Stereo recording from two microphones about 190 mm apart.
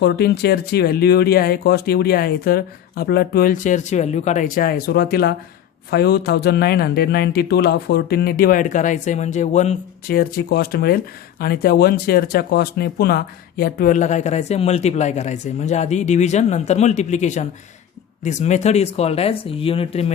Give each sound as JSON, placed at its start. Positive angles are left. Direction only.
{"t": 0.0, "sound": "speech", "side_deg": 60}
{"t": 10.1, "sound": "speech", "side_deg": 55}